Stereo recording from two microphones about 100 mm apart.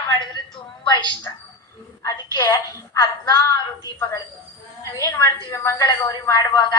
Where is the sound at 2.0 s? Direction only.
35° left (ahead or behind).